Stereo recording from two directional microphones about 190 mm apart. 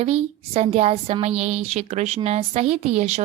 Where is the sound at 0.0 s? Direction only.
35° right (ahead or behind).